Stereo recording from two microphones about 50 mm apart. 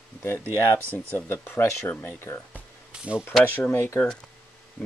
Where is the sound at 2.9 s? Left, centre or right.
Centre.